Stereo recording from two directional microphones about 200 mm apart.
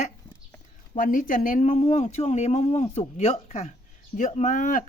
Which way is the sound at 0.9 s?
45° left (ahead or behind).